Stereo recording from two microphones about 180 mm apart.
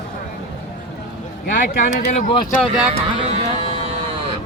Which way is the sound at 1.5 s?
50° left (ahead or behind).